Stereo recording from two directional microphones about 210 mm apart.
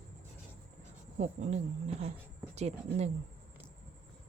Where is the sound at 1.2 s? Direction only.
35° right (ahead or behind).